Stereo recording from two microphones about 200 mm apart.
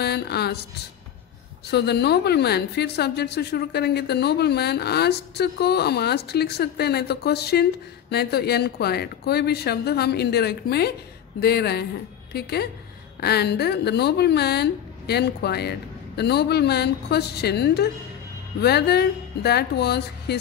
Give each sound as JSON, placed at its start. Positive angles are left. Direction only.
{"t": 0.0, "sound": "speech", "side_deg": 55}
{"t": 1.7, "sound": "a woman's voice", "side_deg": 55}